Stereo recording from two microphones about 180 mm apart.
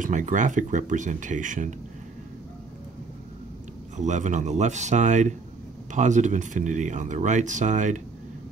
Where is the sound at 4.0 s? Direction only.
40° right (ahead or behind).